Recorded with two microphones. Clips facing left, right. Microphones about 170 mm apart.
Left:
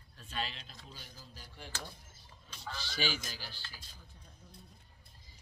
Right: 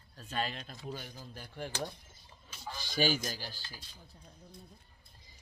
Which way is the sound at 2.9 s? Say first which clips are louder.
Right 8 dB; 45° right (ahead or behind).